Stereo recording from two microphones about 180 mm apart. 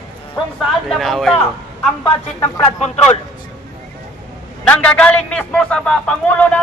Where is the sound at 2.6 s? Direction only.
35° left (ahead or behind).